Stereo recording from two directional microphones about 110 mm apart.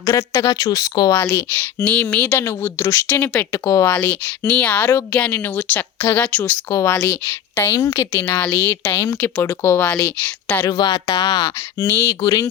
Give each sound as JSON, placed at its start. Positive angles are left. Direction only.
{"t": 0.0, "sound": "speech", "side_deg": 35}
{"t": 1.1, "sound": "speech", "side_deg": 20}
{"t": 6.7, "sound": "a woman's voice", "side_deg": 25}
{"t": 8.1, "sound": "a woman's voice", "side_deg": 15}
{"t": 10.7, "sound": "speech", "side_deg": 40}
{"t": 11.8, "sound": "a woman's voice", "side_deg": 25}